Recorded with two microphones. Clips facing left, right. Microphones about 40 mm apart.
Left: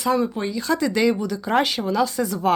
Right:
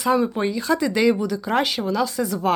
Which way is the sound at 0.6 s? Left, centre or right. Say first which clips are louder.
Even; centre.